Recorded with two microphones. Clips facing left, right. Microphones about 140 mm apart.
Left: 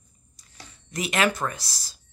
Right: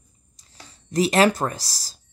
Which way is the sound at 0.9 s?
35° right (ahead or behind).